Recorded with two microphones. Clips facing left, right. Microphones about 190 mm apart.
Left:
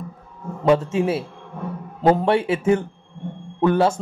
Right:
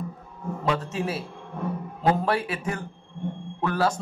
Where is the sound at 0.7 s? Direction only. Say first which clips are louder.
Left 10 dB; 25° left (ahead or behind).